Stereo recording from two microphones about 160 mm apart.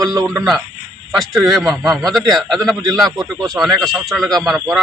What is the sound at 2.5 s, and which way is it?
Speech, 25° right (ahead or behind).